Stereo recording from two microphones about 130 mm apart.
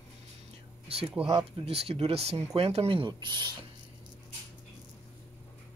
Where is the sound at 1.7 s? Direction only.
50° right (ahead or behind).